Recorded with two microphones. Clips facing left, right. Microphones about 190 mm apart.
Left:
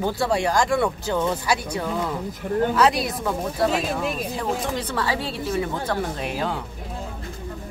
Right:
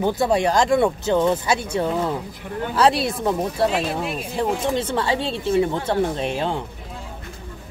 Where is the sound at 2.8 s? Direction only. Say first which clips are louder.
Right 2 dB; 30° right (ahead or behind).